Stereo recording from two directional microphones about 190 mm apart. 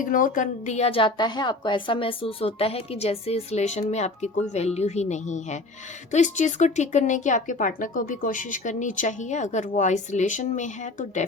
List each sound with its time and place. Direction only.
0.0 s a woman's voice: 45° left (ahead or behind)